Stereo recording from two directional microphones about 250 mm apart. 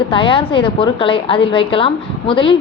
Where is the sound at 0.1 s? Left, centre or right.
Left.